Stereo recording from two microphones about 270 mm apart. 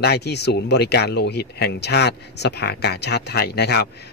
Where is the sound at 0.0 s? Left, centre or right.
Left.